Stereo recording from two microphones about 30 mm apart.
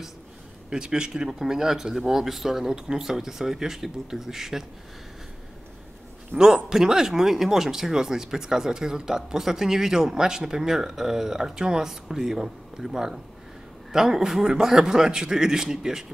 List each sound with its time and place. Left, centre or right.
0.7 s a man's voice: right; by 4.6 s centre
6.3 s a man's voice: centre